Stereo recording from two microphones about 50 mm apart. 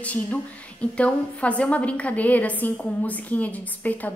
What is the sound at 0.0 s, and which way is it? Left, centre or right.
A woman's voice, left.